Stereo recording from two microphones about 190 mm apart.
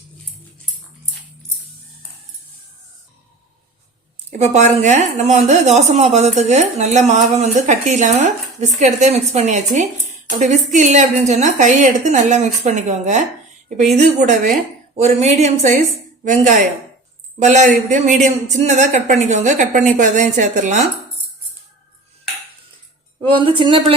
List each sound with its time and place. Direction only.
4.3 s a woman's voice: 35° right (ahead or behind)
23.2 s a woman's voice: 25° right (ahead or behind)